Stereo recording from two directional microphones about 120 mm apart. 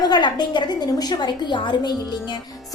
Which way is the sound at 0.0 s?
35° left (ahead or behind).